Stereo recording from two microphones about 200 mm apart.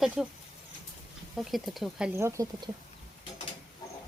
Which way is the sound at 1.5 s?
Centre (ahead or behind).